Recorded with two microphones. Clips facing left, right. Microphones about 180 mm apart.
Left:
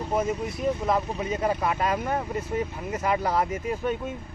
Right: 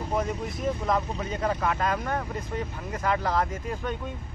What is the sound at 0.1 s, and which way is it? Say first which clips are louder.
Speech: left 3 dB; 5° left (ahead or behind).